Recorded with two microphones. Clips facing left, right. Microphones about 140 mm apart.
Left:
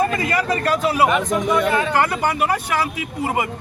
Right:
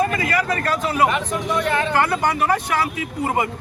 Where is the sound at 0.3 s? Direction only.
20° left (ahead or behind).